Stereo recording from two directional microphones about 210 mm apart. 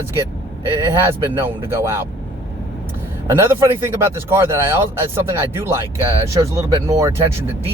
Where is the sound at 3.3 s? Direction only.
10° right (ahead or behind).